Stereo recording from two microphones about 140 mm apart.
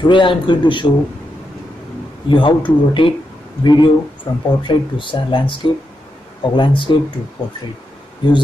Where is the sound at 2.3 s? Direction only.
35° left (ahead or behind).